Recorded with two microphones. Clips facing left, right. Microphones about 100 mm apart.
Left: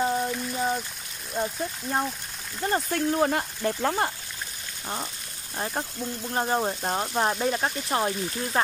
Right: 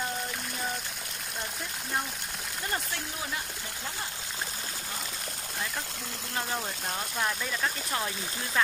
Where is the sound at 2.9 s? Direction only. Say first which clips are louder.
Left 13 dB; 55° left (ahead or behind).